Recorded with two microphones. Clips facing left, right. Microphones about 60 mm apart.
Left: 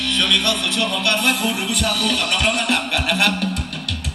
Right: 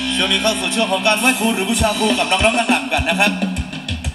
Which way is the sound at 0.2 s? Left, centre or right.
Right.